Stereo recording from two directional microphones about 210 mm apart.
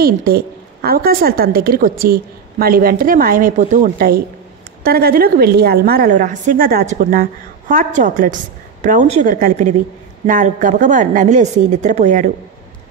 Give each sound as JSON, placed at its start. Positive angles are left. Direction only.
{"t": 0.0, "sound": "a woman's voice", "side_deg": -45}